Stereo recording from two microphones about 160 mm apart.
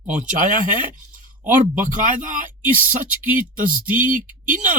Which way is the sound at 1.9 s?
55° right (ahead or behind).